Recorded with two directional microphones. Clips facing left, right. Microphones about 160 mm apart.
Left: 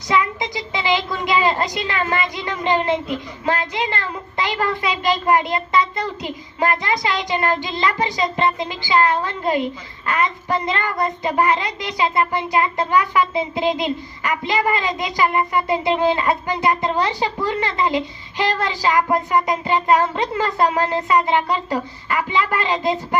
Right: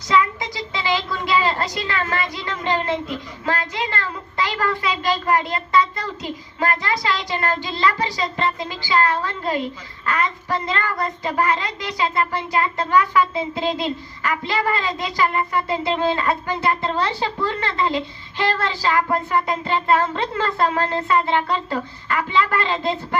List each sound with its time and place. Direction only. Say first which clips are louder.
0.1 s a woman's voice: even; 20° left (ahead or behind)